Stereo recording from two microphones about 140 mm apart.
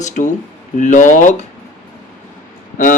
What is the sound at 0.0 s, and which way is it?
Speech, 60° left (ahead or behind).